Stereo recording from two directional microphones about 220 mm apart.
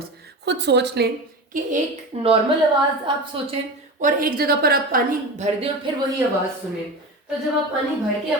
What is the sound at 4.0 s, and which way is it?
A woman's voice, 40° right (ahead or behind).